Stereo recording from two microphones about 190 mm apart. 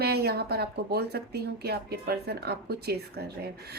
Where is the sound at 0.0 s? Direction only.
60° right (ahead or behind).